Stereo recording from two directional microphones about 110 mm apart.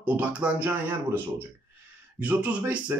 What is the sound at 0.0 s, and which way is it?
Speech, 15° right (ahead or behind).